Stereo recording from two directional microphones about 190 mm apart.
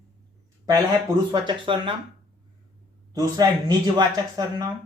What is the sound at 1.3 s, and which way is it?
Speech, 25° right (ahead or behind).